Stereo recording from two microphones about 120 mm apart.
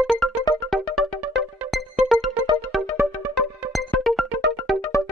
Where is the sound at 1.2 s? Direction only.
10° right (ahead or behind).